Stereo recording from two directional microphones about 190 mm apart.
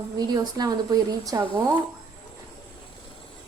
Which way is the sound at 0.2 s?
20° right (ahead or behind).